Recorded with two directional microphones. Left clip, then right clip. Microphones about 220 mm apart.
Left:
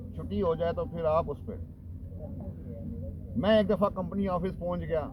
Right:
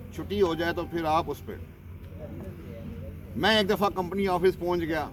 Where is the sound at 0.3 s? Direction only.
25° right (ahead or behind).